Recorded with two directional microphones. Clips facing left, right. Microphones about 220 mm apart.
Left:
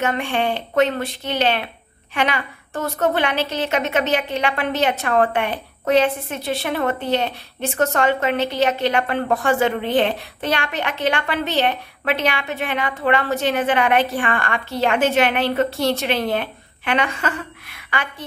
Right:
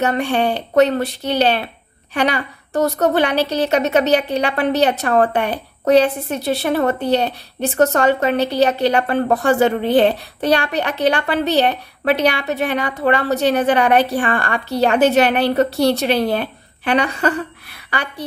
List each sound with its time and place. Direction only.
0.0 s a woman's voice: 40° right (ahead or behind)